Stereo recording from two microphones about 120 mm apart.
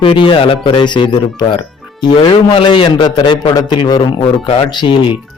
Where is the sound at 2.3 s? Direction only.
45° left (ahead or behind).